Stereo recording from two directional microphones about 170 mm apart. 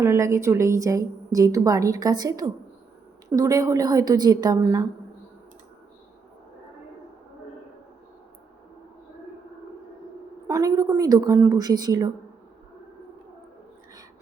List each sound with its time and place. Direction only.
0.0 s a woman's voice: 15° right (ahead or behind)
10.4 s a woman's voice: 20° right (ahead or behind)